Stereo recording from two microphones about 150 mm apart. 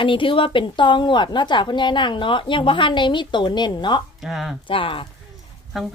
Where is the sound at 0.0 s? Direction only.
35° left (ahead or behind).